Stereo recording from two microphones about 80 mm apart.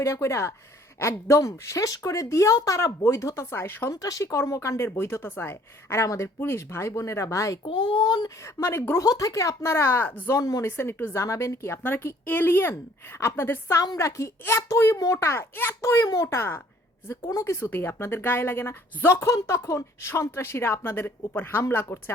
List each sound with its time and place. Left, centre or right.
0.0 s speech: left
2.8 s speech: left
4.0 s speech: left
7.6 s speech: left
8.6 s speech: left
9.0 s speech: left
16.0 s speech: left
16.3 s speech: left